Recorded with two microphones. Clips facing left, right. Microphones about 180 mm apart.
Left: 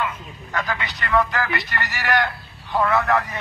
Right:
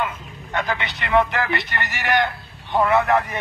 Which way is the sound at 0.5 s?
25° right (ahead or behind).